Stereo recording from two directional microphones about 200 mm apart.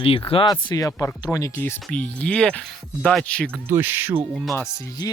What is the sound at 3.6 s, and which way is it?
Speech, 10° right (ahead or behind).